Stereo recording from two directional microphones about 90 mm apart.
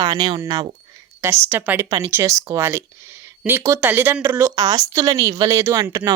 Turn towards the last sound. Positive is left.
turn(degrees=-40)  # may be behind; listen again after turning